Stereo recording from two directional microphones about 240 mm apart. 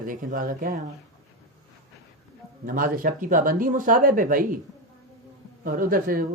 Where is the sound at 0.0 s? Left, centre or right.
Right.